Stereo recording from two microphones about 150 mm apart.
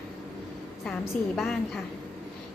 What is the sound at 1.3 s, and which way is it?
Speech, centre (ahead or behind).